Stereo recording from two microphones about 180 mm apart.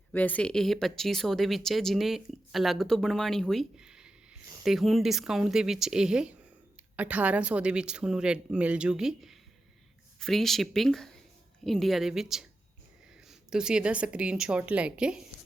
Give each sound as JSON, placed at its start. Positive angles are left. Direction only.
{"t": 0.1, "sound": "a woman's voice", "side_deg": 10}